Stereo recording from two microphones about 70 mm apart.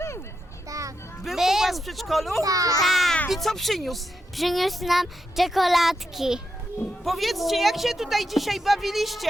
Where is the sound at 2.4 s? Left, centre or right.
Right.